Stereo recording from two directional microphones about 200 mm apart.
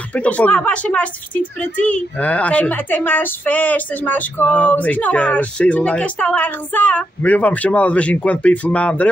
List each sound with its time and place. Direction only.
0.1 s speech: 5° left (ahead or behind)